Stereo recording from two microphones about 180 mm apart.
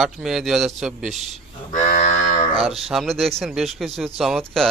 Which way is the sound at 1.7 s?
45° left (ahead or behind).